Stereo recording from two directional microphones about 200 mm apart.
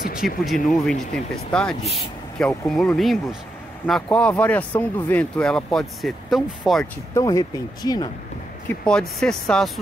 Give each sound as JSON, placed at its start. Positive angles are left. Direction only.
{"t": 0.2, "sound": "speech", "side_deg": 0}
{"t": 7.2, "sound": "speech", "side_deg": 20}
{"t": 8.6, "sound": "speech", "side_deg": 5}